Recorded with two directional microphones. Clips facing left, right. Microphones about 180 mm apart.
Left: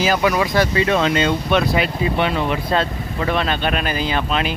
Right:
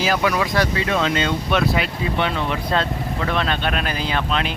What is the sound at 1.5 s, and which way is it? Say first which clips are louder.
Speech: left 2 dB; centre (ahead or behind).